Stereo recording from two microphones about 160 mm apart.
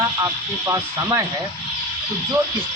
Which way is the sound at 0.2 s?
20° right (ahead or behind).